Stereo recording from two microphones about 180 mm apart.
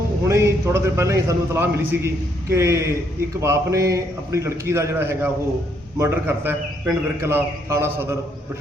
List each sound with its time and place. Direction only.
0.3 s a man's voice: 15° right (ahead or behind)